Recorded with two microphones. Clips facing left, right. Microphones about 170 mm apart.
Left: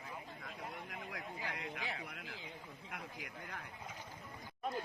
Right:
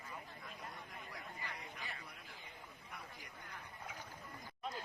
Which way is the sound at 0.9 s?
85° left.